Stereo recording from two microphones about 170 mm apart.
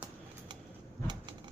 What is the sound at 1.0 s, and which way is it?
Bird, 25° right (ahead or behind).